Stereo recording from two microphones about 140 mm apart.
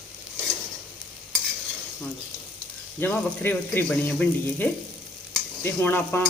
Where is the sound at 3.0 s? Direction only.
15° left (ahead or behind).